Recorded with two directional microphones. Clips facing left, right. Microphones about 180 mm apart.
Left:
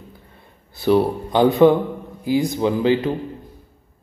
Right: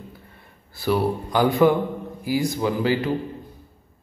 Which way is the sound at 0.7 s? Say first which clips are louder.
Left 5 dB; 25° left (ahead or behind).